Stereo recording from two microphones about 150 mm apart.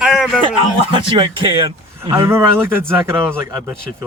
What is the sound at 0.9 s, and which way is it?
A man's voice, 35° right (ahead or behind).